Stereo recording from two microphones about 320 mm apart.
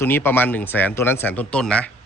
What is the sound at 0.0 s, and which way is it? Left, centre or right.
Speech, centre.